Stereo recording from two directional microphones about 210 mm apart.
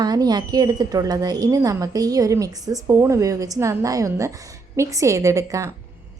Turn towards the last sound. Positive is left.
turn(degrees=-15)  # may be behind; listen again after turning